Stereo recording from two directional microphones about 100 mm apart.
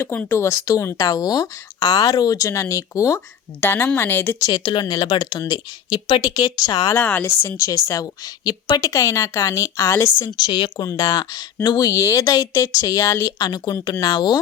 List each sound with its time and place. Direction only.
0.3 s speech: 25° left (ahead or behind)
1.0 s a woman's voice: 40° left (ahead or behind)
4.5 s speech: 50° left (ahead or behind)
6.3 s a woman's voice: 40° left (ahead or behind)
6.9 s a woman's voice: 20° left (ahead or behind)
10.3 s a woman's voice: 45° left (ahead or behind); by 13.3 s 30° left (ahead or behind)
13.4 s a woman's voice: 40° left (ahead or behind)